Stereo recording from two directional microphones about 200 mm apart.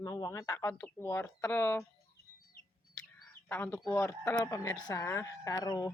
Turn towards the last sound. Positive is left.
turn(degrees=20)  # may be behind; listen again after turning